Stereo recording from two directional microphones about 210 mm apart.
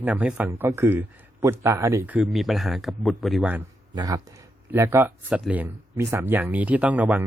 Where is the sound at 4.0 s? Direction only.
15° right (ahead or behind).